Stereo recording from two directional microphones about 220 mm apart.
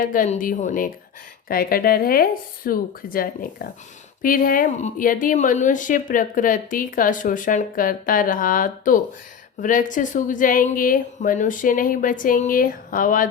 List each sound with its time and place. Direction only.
0.0 s speech: 35° left (ahead or behind)